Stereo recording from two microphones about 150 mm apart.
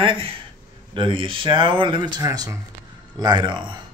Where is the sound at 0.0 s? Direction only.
35° right (ahead or behind).